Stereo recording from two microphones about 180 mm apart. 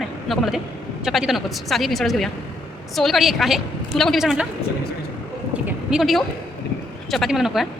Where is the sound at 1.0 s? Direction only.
Centre (ahead or behind).